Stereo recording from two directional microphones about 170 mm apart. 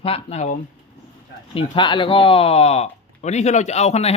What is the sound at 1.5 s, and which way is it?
Speech, 30° left (ahead or behind).